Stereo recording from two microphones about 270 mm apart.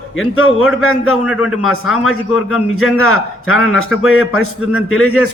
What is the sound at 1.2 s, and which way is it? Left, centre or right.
Speech, centre.